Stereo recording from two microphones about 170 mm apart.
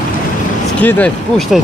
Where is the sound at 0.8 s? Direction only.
10° left (ahead or behind).